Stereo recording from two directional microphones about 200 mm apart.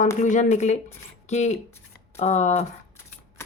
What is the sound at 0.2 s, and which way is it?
Speech, 35° left (ahead or behind).